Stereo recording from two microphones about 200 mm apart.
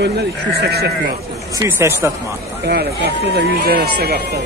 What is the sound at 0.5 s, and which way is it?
Speech, 55° right (ahead or behind).